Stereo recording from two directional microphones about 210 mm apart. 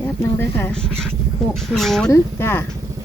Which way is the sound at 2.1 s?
10° left (ahead or behind).